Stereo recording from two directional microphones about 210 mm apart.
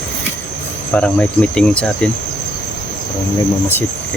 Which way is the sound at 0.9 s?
5° left (ahead or behind).